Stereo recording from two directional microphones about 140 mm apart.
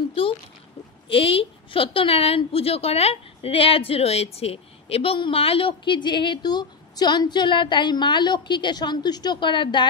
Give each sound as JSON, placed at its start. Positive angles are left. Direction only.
{"t": 1.0, "sound": "a woman's voice", "side_deg": 40}